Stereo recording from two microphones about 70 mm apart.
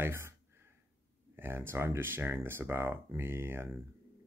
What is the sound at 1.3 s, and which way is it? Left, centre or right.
Speech, right.